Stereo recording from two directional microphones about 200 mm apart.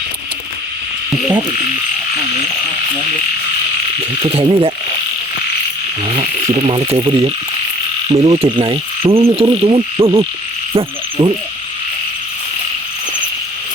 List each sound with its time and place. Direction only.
1.3 s insect: 20° right (ahead or behind)
4.2 s insect: 30° right (ahead or behind)
6.1 s insect: 25° right (ahead or behind)